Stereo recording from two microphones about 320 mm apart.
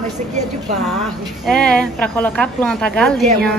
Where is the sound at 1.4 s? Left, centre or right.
Centre.